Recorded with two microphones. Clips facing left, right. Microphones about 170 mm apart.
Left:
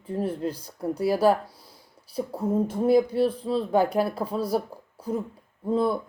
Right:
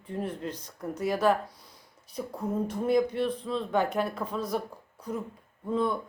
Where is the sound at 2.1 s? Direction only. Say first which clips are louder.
Left 6 dB; 30° left (ahead or behind).